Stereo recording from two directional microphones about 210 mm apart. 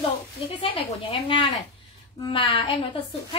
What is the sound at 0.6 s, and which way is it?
Speech, 25° left (ahead or behind).